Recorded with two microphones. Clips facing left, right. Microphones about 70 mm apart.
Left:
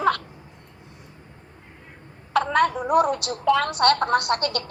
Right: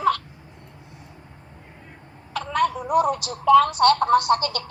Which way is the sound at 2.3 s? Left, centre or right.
Left.